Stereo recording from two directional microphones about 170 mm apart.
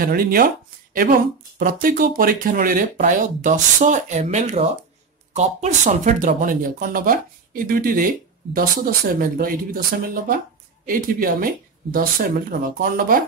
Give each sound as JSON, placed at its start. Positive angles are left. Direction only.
{"t": 0.0, "sound": "speech", "side_deg": -60}
{"t": 1.0, "sound": "a woman's voice", "side_deg": -70}
{"t": 1.6, "sound": "speech", "side_deg": -55}